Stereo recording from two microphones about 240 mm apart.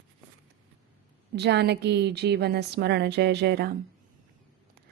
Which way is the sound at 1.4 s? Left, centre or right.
Right.